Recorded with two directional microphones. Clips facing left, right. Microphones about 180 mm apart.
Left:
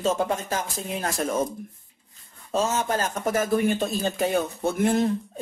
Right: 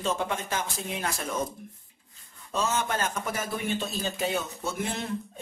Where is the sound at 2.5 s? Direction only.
40° left (ahead or behind).